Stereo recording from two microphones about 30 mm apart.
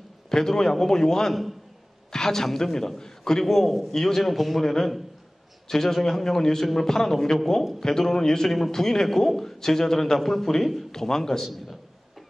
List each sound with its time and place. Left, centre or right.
0.3 s a man's voice: centre
4.2 s a man's voice: centre
4.6 s a man's voice: centre
8.5 s a man's voice: centre
8.7 s a man's voice: centre
10.1 s a man's voice: centre
11.4 s a man's voice: centre